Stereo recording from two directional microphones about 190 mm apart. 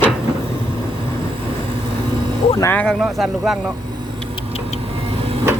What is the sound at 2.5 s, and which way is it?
Speech, 10° left (ahead or behind).